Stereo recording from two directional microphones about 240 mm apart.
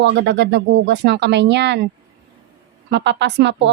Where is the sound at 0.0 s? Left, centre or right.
Right.